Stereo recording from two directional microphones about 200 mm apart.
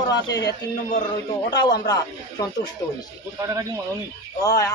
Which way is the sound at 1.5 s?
20° left (ahead or behind).